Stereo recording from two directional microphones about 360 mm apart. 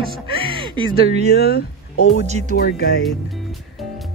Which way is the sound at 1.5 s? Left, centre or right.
Left.